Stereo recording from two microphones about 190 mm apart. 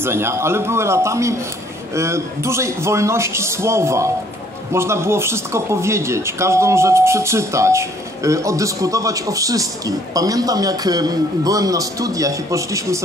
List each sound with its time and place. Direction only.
0.0 s speech: 15° right (ahead or behind)